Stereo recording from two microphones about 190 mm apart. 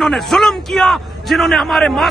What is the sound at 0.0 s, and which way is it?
A man's voice, centre (ahead or behind).